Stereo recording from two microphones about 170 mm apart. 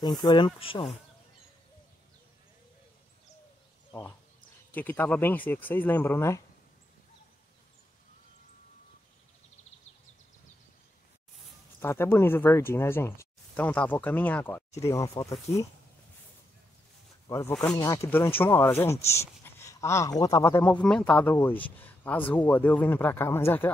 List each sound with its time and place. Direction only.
0.2 s speech: 25° left (ahead or behind)
4.7 s speech: 10° left (ahead or behind)
11.8 s speech: 15° left (ahead or behind)
17.3 s speech: 20° left (ahead or behind)